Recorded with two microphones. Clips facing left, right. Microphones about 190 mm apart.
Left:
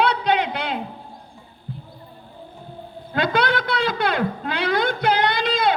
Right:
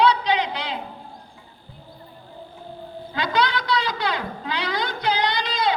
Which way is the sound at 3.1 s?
55° left (ahead or behind).